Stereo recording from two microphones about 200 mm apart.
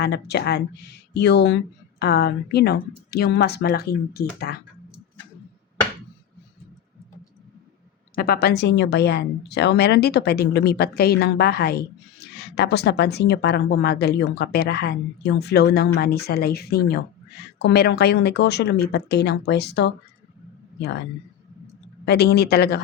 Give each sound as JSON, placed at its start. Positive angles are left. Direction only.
{"t": 0.0, "sound": "speech", "side_deg": 55}
{"t": 8.1, "sound": "a man's voice", "side_deg": 50}
{"t": 22.0, "sound": "speech", "side_deg": 55}